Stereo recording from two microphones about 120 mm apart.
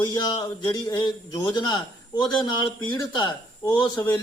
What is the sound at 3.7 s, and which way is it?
Speech, 40° left (ahead or behind).